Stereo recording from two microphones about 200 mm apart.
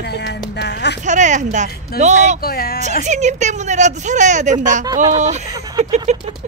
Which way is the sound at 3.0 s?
35° right (ahead or behind).